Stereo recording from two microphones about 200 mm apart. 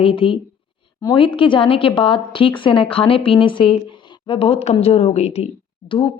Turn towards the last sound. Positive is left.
turn(degrees=25)  # may be behind; listen again after turning